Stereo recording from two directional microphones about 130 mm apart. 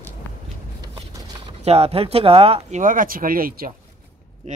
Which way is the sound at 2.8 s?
90° right.